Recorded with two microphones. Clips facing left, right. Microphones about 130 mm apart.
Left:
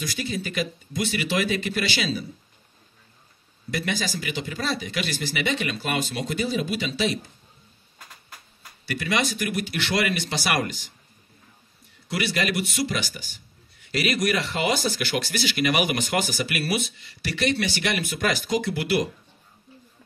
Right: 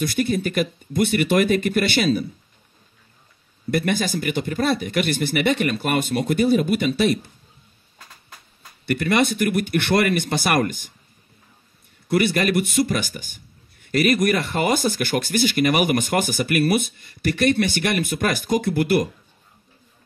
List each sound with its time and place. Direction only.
0.0 s a man's voice: 55° right (ahead or behind)
3.7 s a man's voice: 55° right (ahead or behind)
8.8 s a man's voice: 55° right (ahead or behind)
12.1 s a man's voice: 50° right (ahead or behind)